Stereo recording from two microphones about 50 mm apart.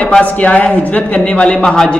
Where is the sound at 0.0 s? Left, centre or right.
Left.